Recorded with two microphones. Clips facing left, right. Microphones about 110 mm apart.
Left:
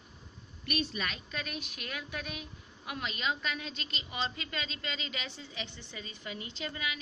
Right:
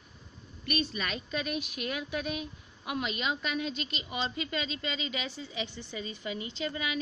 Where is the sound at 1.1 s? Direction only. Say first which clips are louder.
Right 6 dB; 15° right (ahead or behind).